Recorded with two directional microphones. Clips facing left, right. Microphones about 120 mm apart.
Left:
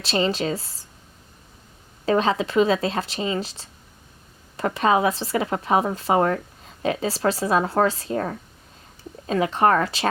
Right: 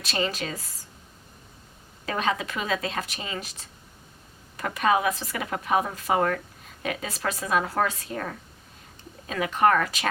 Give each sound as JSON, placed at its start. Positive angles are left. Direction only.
{"t": 0.0, "sound": "speech", "side_deg": 30}
{"t": 2.0, "sound": "speech", "side_deg": 30}